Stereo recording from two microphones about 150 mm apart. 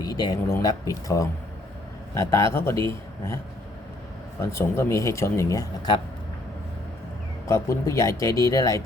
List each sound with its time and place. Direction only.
0.0 s a man's voice: 25° left (ahead or behind)
4.5 s speech: 20° left (ahead or behind)
7.4 s speech: 20° left (ahead or behind)